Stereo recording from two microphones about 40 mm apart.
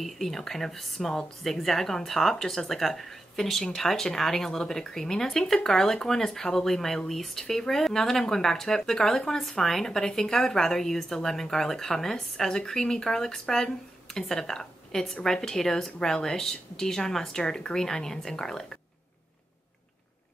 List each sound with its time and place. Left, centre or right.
0.0 s a woman's voice: centre